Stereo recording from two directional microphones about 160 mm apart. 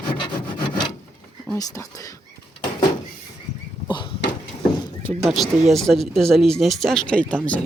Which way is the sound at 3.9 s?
30° left (ahead or behind).